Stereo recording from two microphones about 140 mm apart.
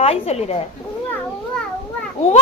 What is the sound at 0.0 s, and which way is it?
Speech, 45° left (ahead or behind).